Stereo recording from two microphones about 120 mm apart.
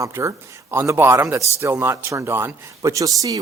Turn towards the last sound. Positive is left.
turn(degrees=-30)  # may be behind; listen again after turning